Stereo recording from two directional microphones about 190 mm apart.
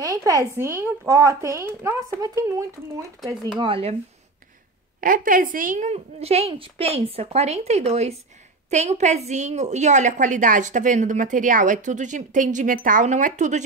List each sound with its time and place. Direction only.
0.0 s a woman's voice: 15° right (ahead or behind)
3.5 s speech: 30° right (ahead or behind)
5.0 s a woman's voice: 45° right (ahead or behind)